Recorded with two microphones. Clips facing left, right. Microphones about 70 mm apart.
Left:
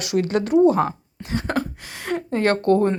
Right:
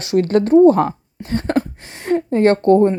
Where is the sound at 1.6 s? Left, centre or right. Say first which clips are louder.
Right 1 dB; right.